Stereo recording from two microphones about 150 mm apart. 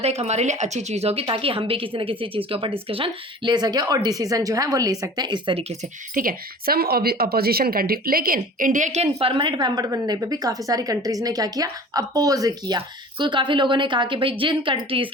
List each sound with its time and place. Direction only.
0.0 s a woman's voice: 45° right (ahead or behind)
6.1 s a woman's voice: 75° right (ahead or behind); by 9.0 s 50° right (ahead or behind)
9.1 s a woman's voice: 35° right (ahead or behind)